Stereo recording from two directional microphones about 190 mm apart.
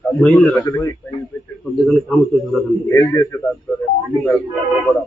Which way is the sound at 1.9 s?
5° left (ahead or behind).